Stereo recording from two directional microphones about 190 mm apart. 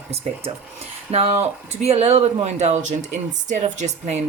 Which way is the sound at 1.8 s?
35° right (ahead or behind).